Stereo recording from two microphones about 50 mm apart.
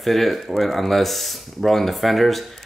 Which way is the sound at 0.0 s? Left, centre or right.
Centre.